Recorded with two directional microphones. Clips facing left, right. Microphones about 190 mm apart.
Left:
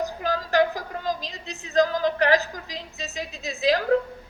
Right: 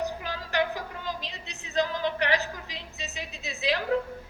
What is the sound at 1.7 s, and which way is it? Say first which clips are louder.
Music: left 6 dB; 40° left (ahead or behind).